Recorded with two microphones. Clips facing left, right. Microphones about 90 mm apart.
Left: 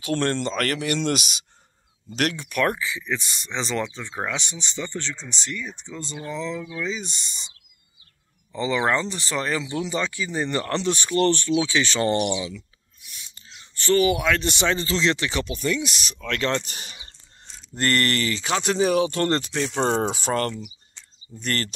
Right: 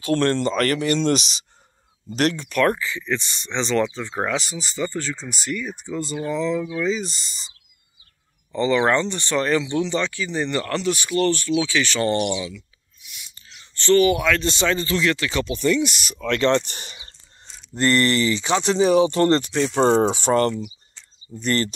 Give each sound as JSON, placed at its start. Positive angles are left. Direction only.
{"t": 0.0, "sound": "speech", "side_deg": 0}
{"t": 8.5, "sound": "speech", "side_deg": 5}
{"t": 12.5, "sound": "a sound", "side_deg": 40}
{"t": 13.5, "sound": "speech", "side_deg": 15}
{"t": 15.4, "sound": "speech", "side_deg": 5}